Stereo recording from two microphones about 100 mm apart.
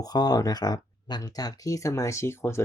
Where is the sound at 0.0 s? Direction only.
40° left (ahead or behind).